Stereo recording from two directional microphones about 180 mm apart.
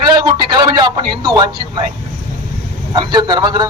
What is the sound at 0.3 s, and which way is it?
Speech, 25° right (ahead or behind).